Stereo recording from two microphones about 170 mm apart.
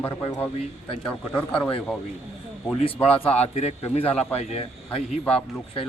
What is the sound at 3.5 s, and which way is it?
A man's voice, 40° left (ahead or behind).